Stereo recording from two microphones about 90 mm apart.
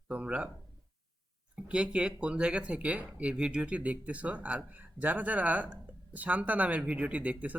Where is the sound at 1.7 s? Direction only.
10° right (ahead or behind).